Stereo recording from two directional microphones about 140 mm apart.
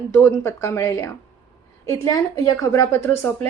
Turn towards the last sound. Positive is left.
turn(degrees=20)  # may be behind; listen again after turning